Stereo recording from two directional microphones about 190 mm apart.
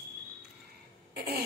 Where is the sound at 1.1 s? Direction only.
55° right (ahead or behind).